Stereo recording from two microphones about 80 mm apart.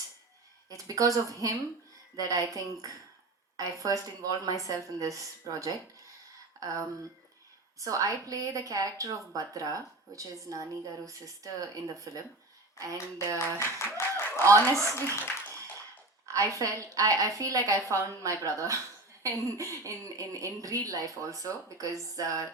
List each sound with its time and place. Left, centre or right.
0.9 s a woman's voice: right
7.8 s a woman's voice: right
13.6 s speech: left
14.4 s a woman's voice: right
16.2 s a woman's voice: right